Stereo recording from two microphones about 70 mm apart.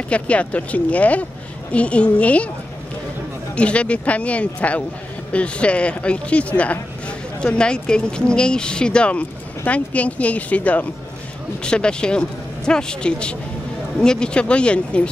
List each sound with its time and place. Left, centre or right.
0.1 s speech: centre
3.5 s speech: centre